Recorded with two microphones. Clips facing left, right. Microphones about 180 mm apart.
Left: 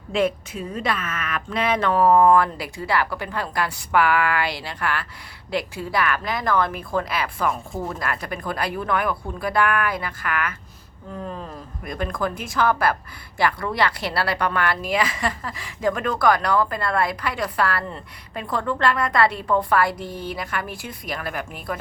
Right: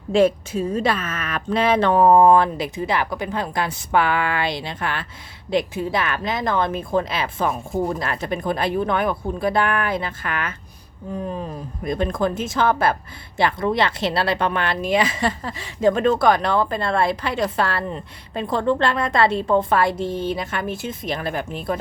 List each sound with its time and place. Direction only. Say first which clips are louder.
0.1 s speech: right 5 dB; 30° right (ahead or behind)